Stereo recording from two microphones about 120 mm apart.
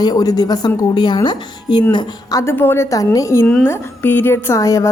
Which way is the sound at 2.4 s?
20° left (ahead or behind).